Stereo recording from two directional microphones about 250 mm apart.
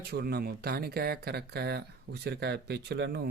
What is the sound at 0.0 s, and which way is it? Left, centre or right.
Speech, right.